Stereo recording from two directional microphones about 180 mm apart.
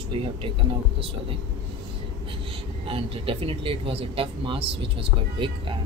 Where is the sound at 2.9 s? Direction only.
30° right (ahead or behind).